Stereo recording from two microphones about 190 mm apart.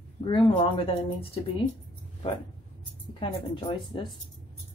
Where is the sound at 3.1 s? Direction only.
25° left (ahead or behind).